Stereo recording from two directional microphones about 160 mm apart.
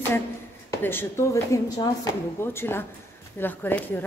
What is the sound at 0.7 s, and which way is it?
Speech, 15° left (ahead or behind).